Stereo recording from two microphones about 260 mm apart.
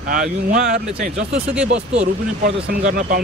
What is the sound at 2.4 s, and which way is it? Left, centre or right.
Speech, right.